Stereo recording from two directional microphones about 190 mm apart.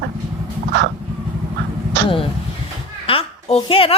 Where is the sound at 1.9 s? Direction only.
70° right (ahead or behind).